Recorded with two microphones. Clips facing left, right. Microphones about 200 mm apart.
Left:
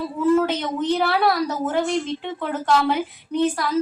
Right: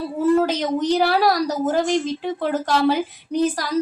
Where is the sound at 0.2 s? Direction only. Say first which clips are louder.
Right 1 dB; 40° right (ahead or behind).